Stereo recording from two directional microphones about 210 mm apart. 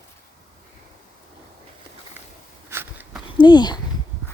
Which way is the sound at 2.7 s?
10° right (ahead or behind).